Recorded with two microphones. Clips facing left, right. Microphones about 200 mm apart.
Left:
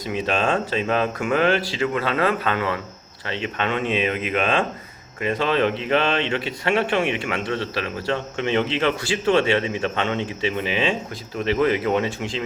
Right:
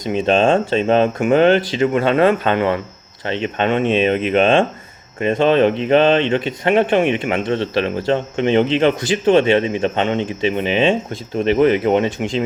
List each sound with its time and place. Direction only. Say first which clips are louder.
0.0 s speech: right 8 dB; 25° right (ahead or behind)